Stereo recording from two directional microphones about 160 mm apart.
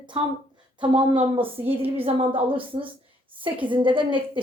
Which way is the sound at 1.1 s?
45° right (ahead or behind).